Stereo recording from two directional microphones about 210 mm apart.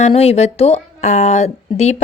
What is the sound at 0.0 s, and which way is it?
Speech, 30° left (ahead or behind).